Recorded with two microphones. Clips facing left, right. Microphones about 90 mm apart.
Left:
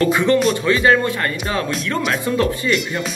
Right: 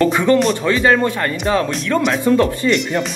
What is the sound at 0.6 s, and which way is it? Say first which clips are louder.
Speech: right 1 dB; 35° right (ahead or behind).